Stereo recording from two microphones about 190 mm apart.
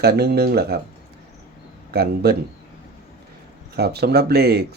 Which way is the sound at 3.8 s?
55° right (ahead or behind).